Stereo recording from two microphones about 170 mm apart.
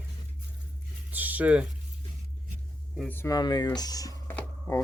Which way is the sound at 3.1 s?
15° left (ahead or behind).